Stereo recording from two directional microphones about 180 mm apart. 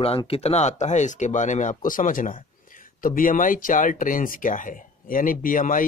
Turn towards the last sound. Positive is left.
turn(degrees=50)  # may be behind; listen again after turning